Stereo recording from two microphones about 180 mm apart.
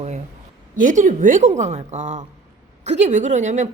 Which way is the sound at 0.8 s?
45° right (ahead or behind).